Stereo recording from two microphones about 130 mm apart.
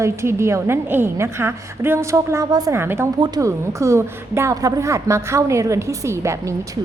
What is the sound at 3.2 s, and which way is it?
A woman's voice, 30° right (ahead or behind).